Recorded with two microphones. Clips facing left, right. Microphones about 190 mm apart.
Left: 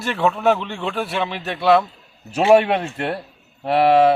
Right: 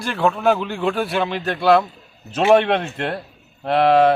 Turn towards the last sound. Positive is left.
turn(degrees=5)  # may be behind; listen again after turning